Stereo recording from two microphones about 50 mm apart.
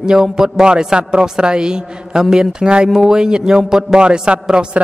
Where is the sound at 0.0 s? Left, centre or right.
Centre.